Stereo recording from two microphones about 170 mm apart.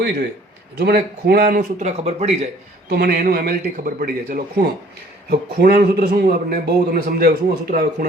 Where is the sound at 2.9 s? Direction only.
65° right (ahead or behind).